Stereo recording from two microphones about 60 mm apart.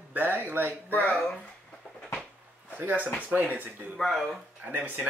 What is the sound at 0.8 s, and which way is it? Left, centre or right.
Speech, left.